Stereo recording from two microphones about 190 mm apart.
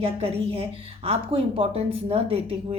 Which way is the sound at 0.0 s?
30° right (ahead or behind).